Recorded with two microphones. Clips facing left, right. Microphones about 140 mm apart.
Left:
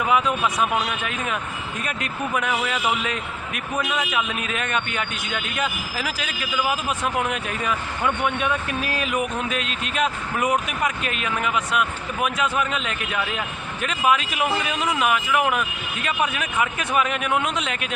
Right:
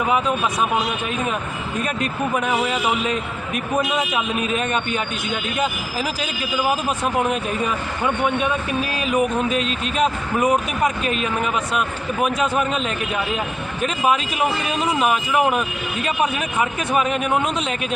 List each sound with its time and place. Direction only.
0.1 s speech: 30° right (ahead or behind)